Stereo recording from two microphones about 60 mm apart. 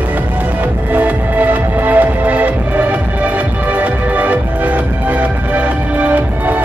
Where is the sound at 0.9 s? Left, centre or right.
Right.